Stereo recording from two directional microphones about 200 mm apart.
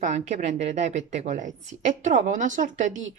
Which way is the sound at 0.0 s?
35° right (ahead or behind).